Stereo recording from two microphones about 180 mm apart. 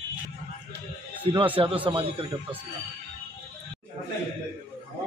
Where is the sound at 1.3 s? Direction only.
30° right (ahead or behind).